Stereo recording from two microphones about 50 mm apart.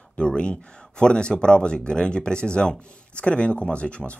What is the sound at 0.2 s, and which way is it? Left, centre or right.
Speech, left.